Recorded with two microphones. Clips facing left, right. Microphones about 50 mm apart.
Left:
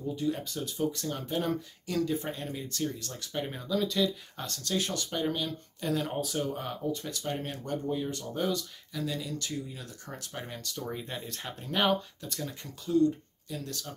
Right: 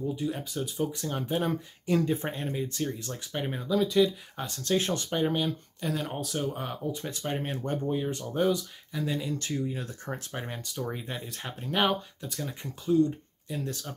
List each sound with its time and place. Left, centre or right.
0.1 s speech: centre
1.9 s speech: right
4.6 s speech: right
5.8 s speech: centre
7.0 s speech: right
8.4 s speech: centre
10.9 s speech: centre